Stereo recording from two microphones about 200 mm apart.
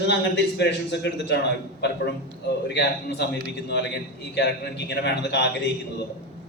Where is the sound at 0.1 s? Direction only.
55° left (ahead or behind).